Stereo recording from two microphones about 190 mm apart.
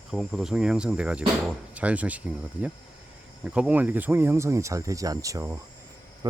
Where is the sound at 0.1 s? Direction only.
Centre (ahead or behind).